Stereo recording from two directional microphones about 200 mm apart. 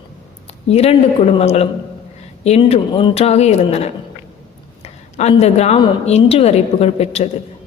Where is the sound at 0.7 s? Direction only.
30° left (ahead or behind).